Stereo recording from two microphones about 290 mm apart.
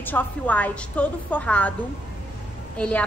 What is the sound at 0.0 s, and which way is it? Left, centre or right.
A woman's voice, centre.